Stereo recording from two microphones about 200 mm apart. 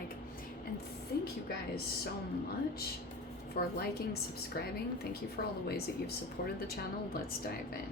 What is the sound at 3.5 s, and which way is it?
Speech, 50° left (ahead or behind).